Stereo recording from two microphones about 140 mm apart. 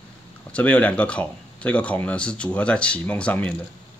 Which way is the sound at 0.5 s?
10° left (ahead or behind).